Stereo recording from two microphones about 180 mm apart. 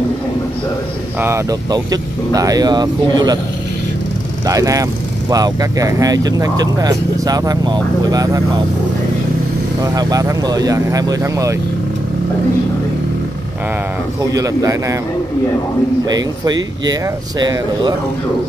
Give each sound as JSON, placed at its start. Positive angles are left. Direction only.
{"t": 1.2, "sound": "speech", "side_deg": -15}
{"t": 4.5, "sound": "speech", "side_deg": -20}
{"t": 9.8, "sound": "speech", "side_deg": -20}
{"t": 14.2, "sound": "speech", "side_deg": -20}
{"t": 16.1, "sound": "speech", "side_deg": -20}